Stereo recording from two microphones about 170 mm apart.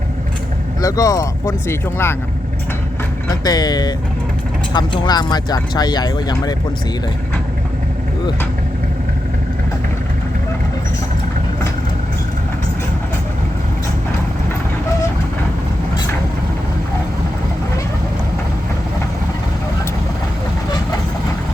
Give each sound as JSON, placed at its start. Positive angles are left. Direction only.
{"t": 0.8, "sound": "speech", "side_deg": 20}
{"t": 3.2, "sound": "speech", "side_deg": 25}